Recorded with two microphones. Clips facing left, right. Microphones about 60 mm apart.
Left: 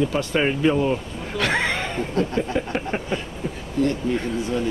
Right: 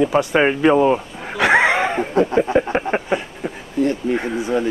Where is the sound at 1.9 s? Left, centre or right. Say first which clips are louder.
Right 6 dB; right.